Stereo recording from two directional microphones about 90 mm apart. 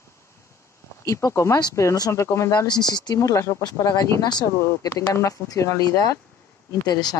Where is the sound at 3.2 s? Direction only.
35° left (ahead or behind).